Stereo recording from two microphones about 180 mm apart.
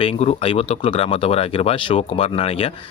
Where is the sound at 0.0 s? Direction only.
35° left (ahead or behind).